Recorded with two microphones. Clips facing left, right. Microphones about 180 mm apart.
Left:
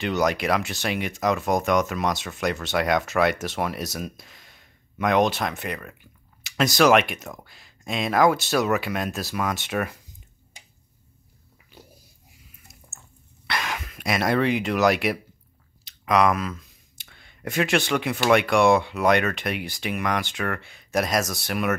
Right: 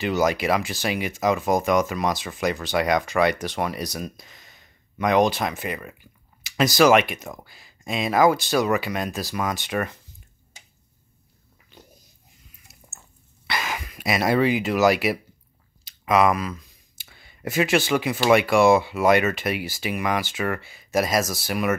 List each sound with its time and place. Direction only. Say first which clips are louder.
0.0 s speech: right 1 dB; centre (ahead or behind)
11.7 s a sound: left 1 dB; 5° left (ahead or behind)
12.8 s drip: right 3 dB; 15° right (ahead or behind)
13.5 s speech: right 1 dB; centre (ahead or behind)